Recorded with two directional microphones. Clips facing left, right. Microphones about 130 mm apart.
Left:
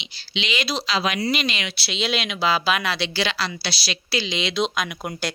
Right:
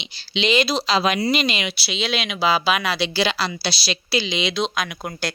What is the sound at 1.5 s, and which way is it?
Speech, 10° right (ahead or behind).